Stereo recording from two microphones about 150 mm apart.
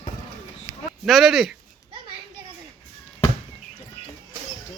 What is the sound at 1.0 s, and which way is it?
Speech, centre (ahead or behind).